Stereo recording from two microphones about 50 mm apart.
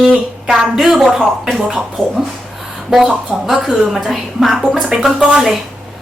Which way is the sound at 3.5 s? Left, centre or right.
Centre.